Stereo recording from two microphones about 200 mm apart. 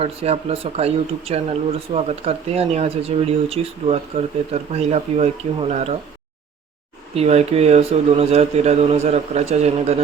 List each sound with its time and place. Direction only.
0.0 s speech: 30° right (ahead or behind)
7.1 s speech: 30° right (ahead or behind)